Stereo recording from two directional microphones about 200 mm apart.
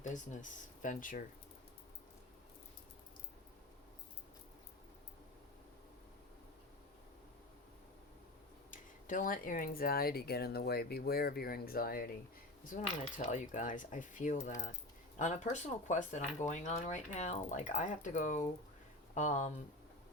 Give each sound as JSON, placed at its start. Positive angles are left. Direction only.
{"t": 0.0, "sound": "speech", "side_deg": 40}
{"t": 8.7, "sound": "speech", "side_deg": 40}